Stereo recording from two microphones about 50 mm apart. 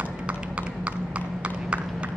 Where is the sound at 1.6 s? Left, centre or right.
Right.